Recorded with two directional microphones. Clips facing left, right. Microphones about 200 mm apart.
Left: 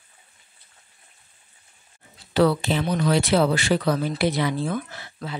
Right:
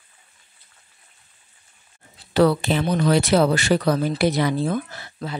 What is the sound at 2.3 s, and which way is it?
Speech, 50° right (ahead or behind).